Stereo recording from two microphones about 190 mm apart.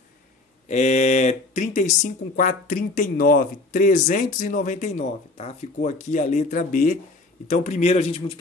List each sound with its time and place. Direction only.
0.7 s a man's voice: 35° left (ahead or behind)